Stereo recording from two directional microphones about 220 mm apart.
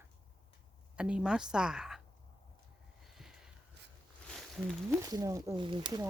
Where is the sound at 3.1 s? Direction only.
Centre (ahead or behind).